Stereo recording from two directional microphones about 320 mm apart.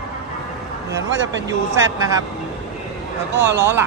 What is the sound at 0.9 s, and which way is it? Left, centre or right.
Speech, right.